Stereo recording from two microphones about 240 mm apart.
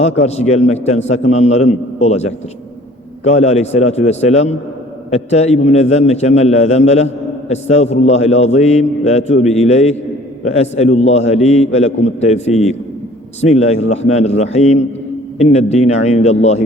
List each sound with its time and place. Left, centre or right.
0.0 s a man's voice: left